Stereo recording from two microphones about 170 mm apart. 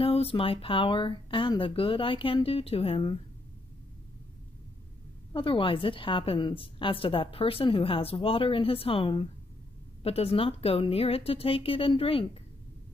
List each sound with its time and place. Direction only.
0.0 s a woman's voice: 35° left (ahead or behind)
5.3 s a woman's voice: 30° left (ahead or behind)